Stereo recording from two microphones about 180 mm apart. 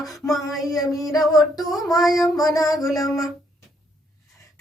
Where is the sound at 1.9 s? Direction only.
Centre (ahead or behind).